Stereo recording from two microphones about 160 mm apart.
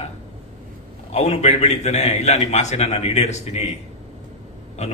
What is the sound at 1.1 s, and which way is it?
A man's voice, 45° left (ahead or behind).